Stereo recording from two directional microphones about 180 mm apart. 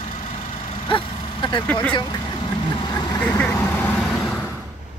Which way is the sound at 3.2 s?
10° left (ahead or behind).